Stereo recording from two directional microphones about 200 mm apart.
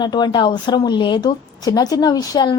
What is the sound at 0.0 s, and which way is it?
Speech, 20° left (ahead or behind).